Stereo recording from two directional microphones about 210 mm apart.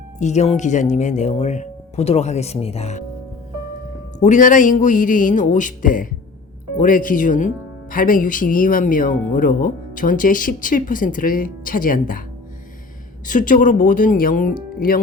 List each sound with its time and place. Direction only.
0.2 s speech: 35° left (ahead or behind)
4.2 s speech: 35° left (ahead or behind)
13.2 s speech: 40° left (ahead or behind)